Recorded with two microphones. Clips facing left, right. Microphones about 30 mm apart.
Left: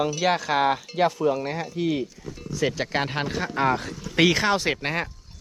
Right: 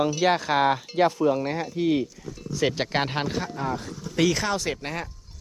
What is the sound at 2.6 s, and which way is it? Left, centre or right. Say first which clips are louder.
Speech: right 1 dB; right.